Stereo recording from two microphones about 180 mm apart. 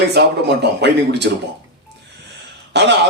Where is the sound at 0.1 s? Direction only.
65° right (ahead or behind).